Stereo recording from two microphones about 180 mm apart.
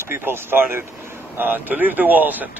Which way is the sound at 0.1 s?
10° right (ahead or behind).